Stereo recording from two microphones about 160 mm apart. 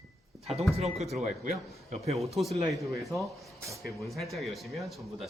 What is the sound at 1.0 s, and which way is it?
Speech, centre (ahead or behind).